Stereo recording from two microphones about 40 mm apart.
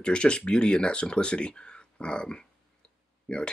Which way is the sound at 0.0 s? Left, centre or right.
Left.